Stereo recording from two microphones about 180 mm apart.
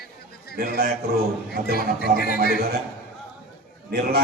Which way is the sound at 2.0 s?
55° left (ahead or behind).